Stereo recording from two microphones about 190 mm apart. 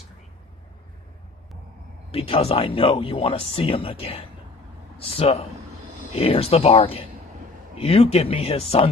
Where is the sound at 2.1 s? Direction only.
30° left (ahead or behind).